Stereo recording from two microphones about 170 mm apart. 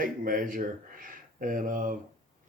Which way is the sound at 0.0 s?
55° right (ahead or behind).